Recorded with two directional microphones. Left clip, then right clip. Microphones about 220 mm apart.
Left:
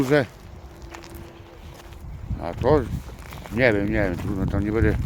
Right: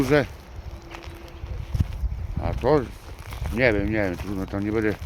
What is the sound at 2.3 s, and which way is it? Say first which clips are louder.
Clip-clop: left 1 dB; 10° left (ahead or behind).